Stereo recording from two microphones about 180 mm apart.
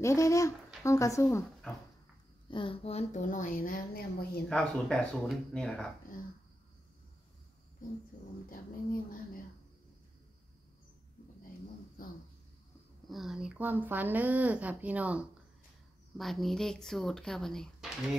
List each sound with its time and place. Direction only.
0.0 s speech: 15° left (ahead or behind)
2.5 s a woman's voice: 30° left (ahead or behind); by 4.5 s 55° left (ahead or behind)
4.5 s speech: 5° left (ahead or behind)
7.8 s a woman's voice: 50° left (ahead or behind)
12.0 s speech: 55° left (ahead or behind)
13.1 s speech: centre (ahead or behind)